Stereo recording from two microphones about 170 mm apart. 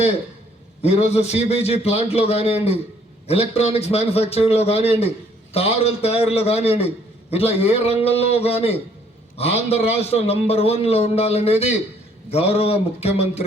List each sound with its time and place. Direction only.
1.1 s a man's voice: 40° left (ahead or behind)